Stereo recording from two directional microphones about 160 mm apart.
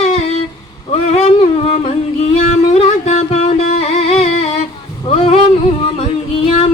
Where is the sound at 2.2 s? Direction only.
40° left (ahead or behind).